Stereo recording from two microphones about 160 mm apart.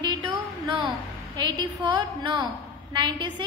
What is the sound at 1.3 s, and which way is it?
A woman's voice, 30° right (ahead or behind).